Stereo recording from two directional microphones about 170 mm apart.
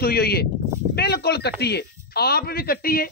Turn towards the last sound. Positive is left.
turn(degrees=60)  # may be behind; listen again after turning